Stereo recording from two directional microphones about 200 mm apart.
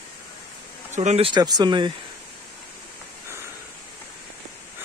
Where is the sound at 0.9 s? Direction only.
35° right (ahead or behind).